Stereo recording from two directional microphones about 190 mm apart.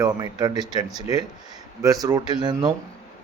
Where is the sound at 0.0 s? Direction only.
20° right (ahead or behind).